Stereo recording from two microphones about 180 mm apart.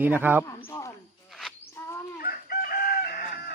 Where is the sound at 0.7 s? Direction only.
20° left (ahead or behind).